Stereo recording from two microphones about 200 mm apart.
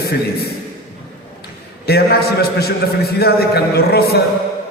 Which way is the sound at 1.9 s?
50° left (ahead or behind).